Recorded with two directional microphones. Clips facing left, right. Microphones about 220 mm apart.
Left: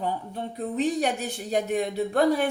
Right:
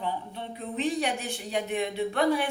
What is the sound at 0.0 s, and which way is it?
Speech, 40° left (ahead or behind).